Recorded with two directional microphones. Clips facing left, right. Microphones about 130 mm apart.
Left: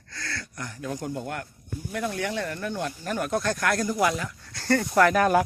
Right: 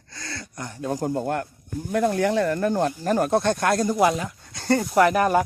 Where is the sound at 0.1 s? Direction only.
20° right (ahead or behind).